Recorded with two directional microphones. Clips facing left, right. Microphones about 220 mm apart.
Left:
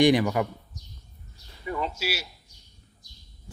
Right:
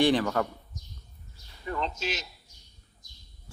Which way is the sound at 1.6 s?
10° left (ahead or behind).